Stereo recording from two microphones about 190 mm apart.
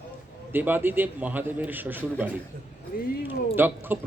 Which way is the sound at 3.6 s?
10° right (ahead or behind).